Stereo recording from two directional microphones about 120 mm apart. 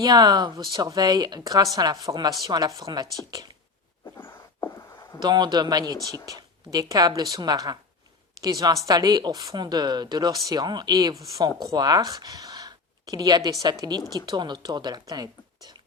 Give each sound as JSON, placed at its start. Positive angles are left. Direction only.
{"t": 0.0, "sound": "speech", "side_deg": -35}
{"t": 4.2, "sound": "a sound", "side_deg": 20}
{"t": 5.2, "sound": "a woman's voice", "side_deg": -40}